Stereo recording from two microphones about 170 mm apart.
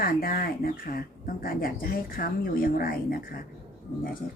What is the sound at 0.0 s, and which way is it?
Speech, 55° left (ahead or behind).